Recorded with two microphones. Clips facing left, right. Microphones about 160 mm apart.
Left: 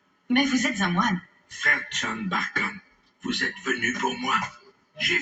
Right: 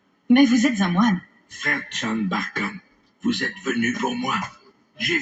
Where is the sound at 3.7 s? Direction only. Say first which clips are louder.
Right 5 dB; 40° right (ahead or behind).